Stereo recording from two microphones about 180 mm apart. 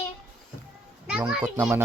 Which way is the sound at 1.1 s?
5° right (ahead or behind).